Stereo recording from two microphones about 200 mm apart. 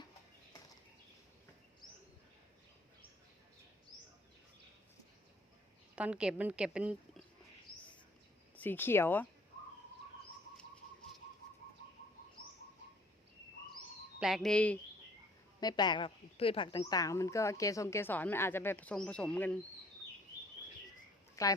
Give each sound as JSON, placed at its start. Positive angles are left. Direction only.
{"t": 6.0, "sound": "a woman's voice", "side_deg": -5}
{"t": 8.5, "sound": "speech", "side_deg": 10}
{"t": 14.2, "sound": "speech", "side_deg": 0}
{"t": 15.6, "sound": "speech", "side_deg": 20}
{"t": 21.4, "sound": "speech", "side_deg": 15}